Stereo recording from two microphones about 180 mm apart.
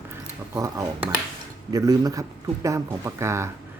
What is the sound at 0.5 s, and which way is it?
Speech, 15° right (ahead or behind).